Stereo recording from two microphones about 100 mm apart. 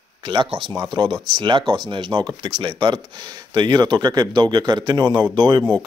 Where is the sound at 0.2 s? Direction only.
50° right (ahead or behind).